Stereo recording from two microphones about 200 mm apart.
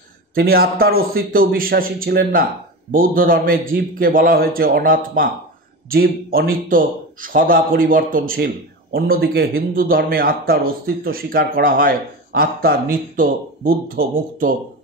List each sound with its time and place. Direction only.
0.3 s a man's voice: 50° right (ahead or behind)